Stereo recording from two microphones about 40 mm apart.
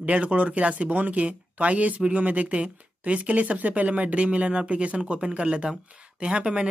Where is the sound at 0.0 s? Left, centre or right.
Right.